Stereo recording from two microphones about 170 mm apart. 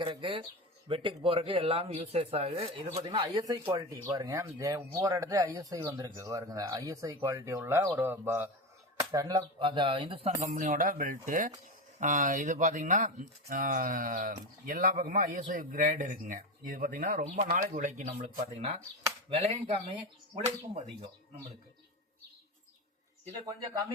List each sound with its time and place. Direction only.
0.0 s speech: 30° right (ahead or behind)
10.4 s speech: 45° right (ahead or behind)